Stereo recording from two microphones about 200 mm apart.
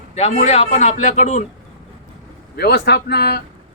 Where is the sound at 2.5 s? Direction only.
55° left (ahead or behind).